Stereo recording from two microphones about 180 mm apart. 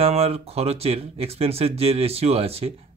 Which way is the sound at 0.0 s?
35° right (ahead or behind).